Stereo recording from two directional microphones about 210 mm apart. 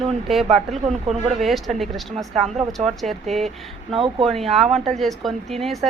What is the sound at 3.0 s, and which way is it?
Speech, centre (ahead or behind).